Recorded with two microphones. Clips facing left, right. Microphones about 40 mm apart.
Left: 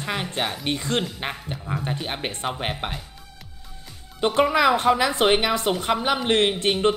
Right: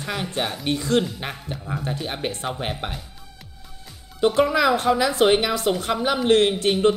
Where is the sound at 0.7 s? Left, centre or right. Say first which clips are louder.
Right 6 dB; left.